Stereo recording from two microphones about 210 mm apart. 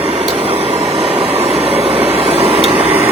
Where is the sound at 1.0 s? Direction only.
30° right (ahead or behind).